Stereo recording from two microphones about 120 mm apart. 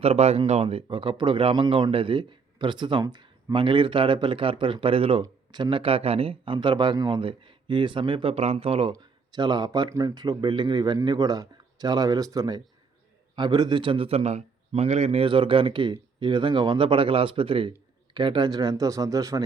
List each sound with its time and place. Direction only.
0.0 s a man's voice: 60° right (ahead or behind)
5.2 s a man's voice: 35° right (ahead or behind); by 8.9 s 50° right (ahead or behind)
8.9 s a man's voice: 35° right (ahead or behind)